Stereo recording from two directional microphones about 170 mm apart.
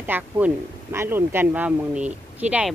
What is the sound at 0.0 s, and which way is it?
Speech, 10° right (ahead or behind).